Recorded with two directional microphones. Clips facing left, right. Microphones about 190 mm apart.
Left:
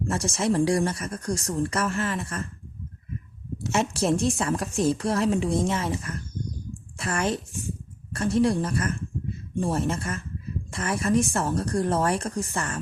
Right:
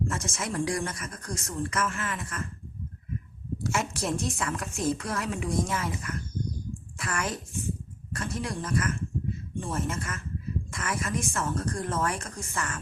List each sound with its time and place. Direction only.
0.1 s a woman's voice: 35° left (ahead or behind)
3.6 s a woman's voice: 25° left (ahead or behind)